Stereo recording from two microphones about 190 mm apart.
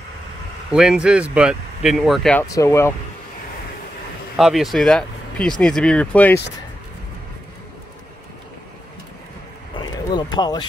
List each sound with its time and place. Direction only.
0.7 s speech: 5° right (ahead or behind)
2.4 s speech: 15° left (ahead or behind)
4.4 s speech: centre (ahead or behind)
9.8 s a sound: 25° left (ahead or behind)